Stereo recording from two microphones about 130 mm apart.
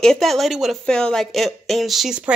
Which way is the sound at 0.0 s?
5° left (ahead or behind).